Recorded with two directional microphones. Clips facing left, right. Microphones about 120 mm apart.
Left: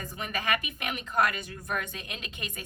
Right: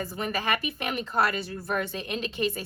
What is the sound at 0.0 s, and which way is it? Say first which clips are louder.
A woman's voice: right 4 dB; 40° right (ahead or behind).